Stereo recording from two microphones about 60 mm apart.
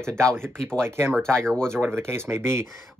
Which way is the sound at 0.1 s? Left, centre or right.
Centre.